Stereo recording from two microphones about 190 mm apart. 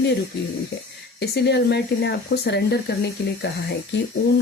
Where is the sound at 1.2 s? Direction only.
60° left (ahead or behind).